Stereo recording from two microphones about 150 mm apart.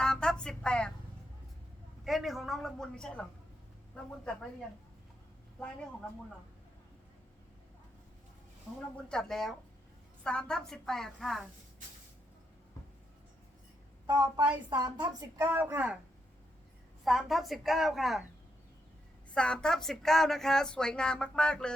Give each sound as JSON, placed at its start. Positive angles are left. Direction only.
{"t": 0.0, "sound": "music", "side_deg": 5}
{"t": 2.0, "sound": "speech", "side_deg": 0}
{"t": 9.0, "sound": "speech", "side_deg": 5}
{"t": 14.1, "sound": "speech", "side_deg": -25}
{"t": 15.5, "sound": "speech", "side_deg": -10}
{"t": 17.0, "sound": "speech", "side_deg": 0}
{"t": 19.3, "sound": "speech", "side_deg": 5}